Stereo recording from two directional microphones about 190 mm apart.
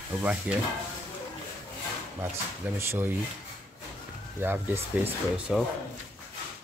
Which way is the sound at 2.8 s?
10° right (ahead or behind).